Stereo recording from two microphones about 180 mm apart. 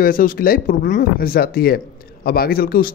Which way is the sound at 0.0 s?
50° left (ahead or behind).